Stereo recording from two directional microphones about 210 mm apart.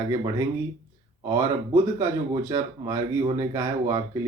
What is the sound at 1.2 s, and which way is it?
Speech, 15° right (ahead or behind).